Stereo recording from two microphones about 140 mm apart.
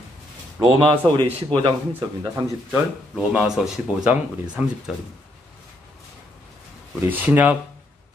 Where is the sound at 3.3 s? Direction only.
5° right (ahead or behind).